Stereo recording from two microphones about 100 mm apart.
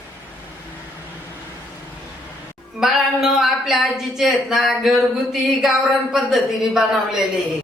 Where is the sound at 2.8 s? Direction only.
5° right (ahead or behind).